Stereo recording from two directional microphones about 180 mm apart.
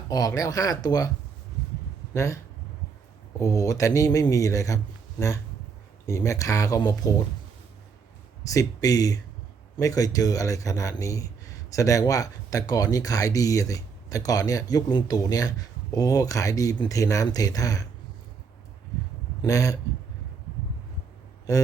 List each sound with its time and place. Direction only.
0.1 s speech: 20° left (ahead or behind)
2.1 s speech: 15° left (ahead or behind)
6.1 s speech: 15° left (ahead or behind)
8.4 s speech: 20° left (ahead or behind)
19.4 s speech: 20° left (ahead or behind)